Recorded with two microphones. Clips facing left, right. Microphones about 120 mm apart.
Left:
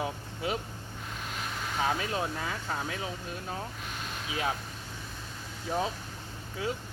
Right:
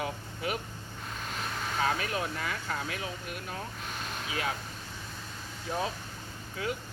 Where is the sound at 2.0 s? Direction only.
25° left (ahead or behind).